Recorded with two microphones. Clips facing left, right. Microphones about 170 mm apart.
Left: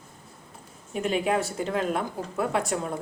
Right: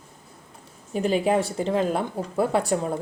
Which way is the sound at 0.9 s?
35° right (ahead or behind).